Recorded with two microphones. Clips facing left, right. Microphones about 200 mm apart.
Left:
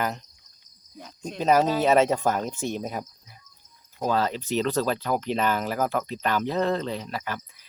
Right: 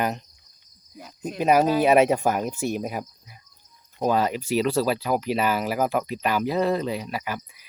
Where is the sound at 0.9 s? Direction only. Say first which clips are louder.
Right 3 dB; 5° right (ahead or behind).